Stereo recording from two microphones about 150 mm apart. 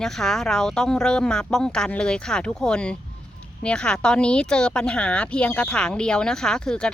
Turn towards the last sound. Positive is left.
turn(degrees=5)  # may be behind; listen again after turning